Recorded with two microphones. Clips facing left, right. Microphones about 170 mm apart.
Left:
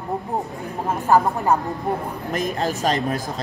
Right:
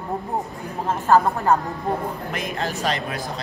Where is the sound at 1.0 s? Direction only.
15° left (ahead or behind).